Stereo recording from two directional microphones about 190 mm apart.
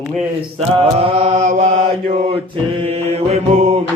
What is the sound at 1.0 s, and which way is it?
Mantra, 30° right (ahead or behind).